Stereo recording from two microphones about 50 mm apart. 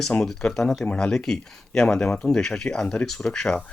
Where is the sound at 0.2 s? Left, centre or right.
Centre.